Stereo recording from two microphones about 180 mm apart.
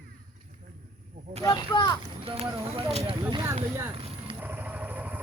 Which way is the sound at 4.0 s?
35° right (ahead or behind).